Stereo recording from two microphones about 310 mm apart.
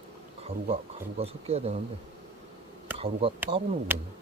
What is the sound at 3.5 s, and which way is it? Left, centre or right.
Speech, centre.